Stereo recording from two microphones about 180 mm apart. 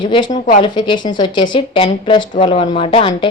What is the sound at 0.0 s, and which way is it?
A woman's voice, 25° left (ahead or behind).